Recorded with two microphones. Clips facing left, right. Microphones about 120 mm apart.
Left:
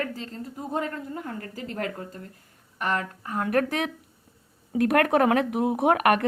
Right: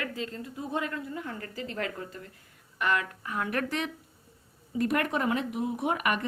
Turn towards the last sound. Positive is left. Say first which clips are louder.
# left 8 dB
turn(degrees=60)  # may be behind; listen again after turning